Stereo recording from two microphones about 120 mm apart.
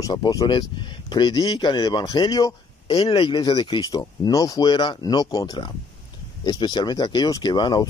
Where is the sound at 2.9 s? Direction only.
45° left (ahead or behind).